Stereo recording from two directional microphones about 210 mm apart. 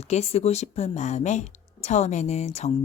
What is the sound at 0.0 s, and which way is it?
Speech, 30° left (ahead or behind).